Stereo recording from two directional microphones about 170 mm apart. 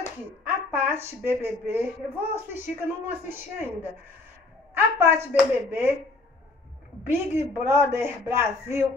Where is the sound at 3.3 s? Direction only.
15° right (ahead or behind).